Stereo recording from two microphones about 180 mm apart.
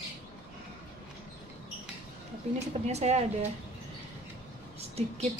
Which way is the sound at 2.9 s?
35° right (ahead or behind).